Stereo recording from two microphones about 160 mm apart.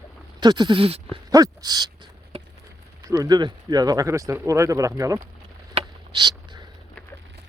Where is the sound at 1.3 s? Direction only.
25° right (ahead or behind).